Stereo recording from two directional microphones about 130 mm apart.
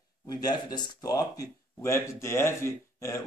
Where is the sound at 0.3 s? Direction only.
30° left (ahead or behind).